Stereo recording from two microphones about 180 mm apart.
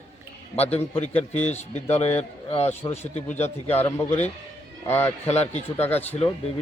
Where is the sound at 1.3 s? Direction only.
40° left (ahead or behind).